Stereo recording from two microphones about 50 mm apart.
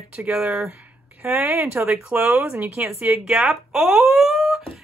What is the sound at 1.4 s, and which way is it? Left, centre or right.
Speech, right.